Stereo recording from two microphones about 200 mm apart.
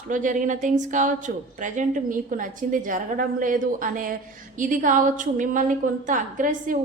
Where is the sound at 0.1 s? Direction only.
40° right (ahead or behind).